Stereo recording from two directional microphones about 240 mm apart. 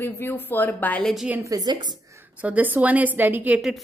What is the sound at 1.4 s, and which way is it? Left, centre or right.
Speech, centre.